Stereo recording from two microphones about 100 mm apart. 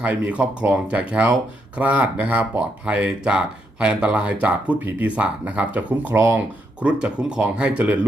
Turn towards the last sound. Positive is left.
turn(degrees=-15)  # may be behind; listen again after turning